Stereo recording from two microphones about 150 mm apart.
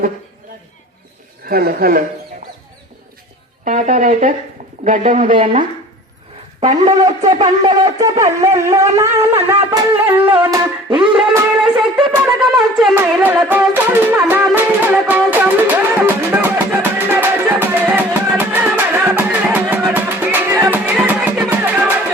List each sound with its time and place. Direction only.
1.5 s speech: 85° right
3.6 s speech: 55° right (ahead or behind)
6.6 s speech: 50° right (ahead or behind)
6.9 s shofar: 25° right (ahead or behind)
9.7 s music: 20° right (ahead or behind)
10.5 s a sound: 20° right (ahead or behind)
10.9 s a sound: 5° right (ahead or behind)
12.4 s speech: centre (ahead or behind)
13.2 s music: 10° right (ahead or behind)